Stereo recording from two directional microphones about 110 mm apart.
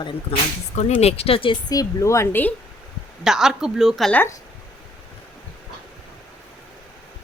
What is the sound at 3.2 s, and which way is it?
Speech, 5° right (ahead or behind).